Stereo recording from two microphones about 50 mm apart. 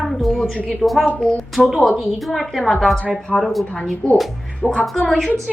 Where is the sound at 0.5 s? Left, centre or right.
Left.